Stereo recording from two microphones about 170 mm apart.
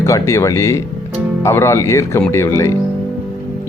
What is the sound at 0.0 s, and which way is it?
Speech, 15° left (ahead or behind).